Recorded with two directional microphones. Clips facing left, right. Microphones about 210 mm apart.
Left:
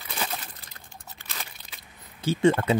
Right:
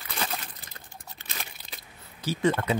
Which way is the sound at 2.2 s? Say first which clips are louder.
Left 4 dB; 25° left (ahead or behind).